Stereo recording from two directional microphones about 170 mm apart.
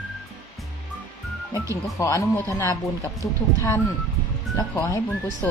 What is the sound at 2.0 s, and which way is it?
Speech, 15° left (ahead or behind).